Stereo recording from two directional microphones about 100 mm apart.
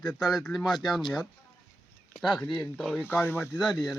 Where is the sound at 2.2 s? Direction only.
10° left (ahead or behind).